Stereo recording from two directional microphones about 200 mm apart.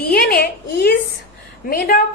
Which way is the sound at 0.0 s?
50° left (ahead or behind).